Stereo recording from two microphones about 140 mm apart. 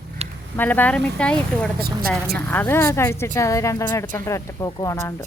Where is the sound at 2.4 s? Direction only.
10° left (ahead or behind).